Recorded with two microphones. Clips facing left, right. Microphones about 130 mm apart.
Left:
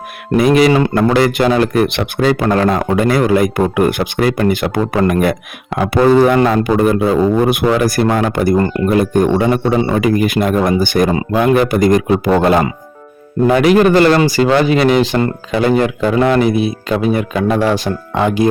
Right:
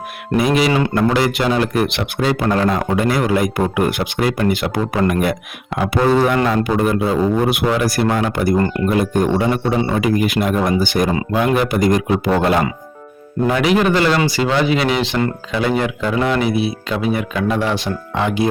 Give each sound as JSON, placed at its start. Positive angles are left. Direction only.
{"t": 0.3, "sound": "speech", "side_deg": 50}
{"t": 13.5, "sound": "speech", "side_deg": 50}